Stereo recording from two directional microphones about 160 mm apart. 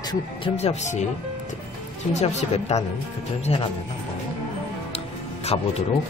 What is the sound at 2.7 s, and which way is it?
Speech, 45° left (ahead or behind).